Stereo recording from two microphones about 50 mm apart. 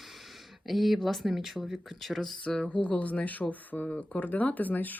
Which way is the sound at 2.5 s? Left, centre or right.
Left.